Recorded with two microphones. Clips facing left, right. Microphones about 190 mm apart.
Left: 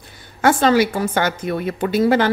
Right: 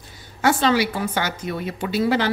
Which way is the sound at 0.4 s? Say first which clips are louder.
Left 4 dB; 50° left (ahead or behind).